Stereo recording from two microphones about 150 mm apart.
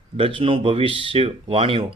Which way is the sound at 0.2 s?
35° right (ahead or behind).